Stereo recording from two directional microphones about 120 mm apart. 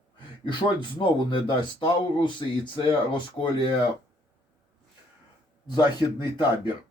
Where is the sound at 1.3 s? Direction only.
40° left (ahead or behind).